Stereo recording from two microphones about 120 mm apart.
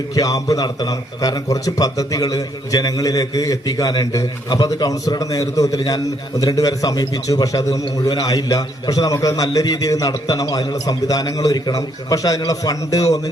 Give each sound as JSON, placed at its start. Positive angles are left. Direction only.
{"t": 0.1, "sound": "a man's voice", "side_deg": 30}